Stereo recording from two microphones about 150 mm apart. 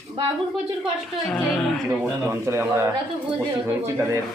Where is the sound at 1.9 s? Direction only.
5° right (ahead or behind).